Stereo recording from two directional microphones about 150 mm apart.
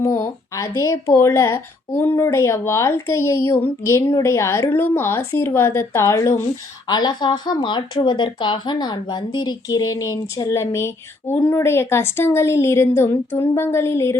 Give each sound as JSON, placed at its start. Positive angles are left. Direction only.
{"t": 0.2, "sound": "speech", "side_deg": 20}